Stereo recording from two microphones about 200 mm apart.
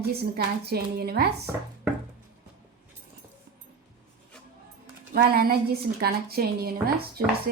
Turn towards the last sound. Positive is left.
turn(degrees=-50)  # may be behind; listen again after turning